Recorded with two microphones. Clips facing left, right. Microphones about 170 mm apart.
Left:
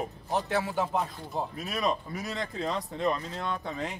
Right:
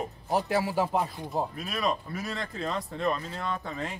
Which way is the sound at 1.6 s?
20° left (ahead or behind).